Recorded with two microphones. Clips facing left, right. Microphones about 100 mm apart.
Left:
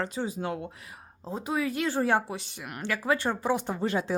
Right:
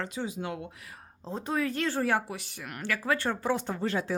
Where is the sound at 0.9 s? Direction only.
10° left (ahead or behind).